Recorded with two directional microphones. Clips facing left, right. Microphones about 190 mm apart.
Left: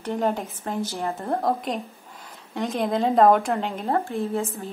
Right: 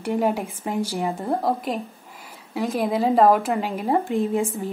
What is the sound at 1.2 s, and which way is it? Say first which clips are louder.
Speech: left 1 dB; centre (ahead or behind).